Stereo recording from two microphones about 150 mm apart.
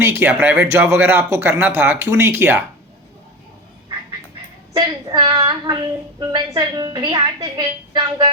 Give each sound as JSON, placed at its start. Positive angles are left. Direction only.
{"t": 0.0, "sound": "speech", "side_deg": -15}
{"t": 4.8, "sound": "a woman's voice", "side_deg": -30}